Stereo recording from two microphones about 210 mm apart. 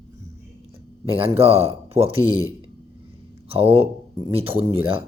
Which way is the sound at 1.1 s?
25° right (ahead or behind).